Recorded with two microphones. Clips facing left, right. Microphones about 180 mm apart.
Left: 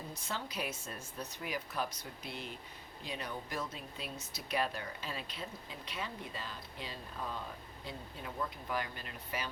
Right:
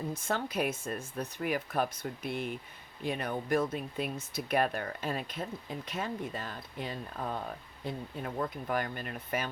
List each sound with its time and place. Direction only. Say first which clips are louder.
0.1 s speech: right 8 dB; 50° right (ahead or behind)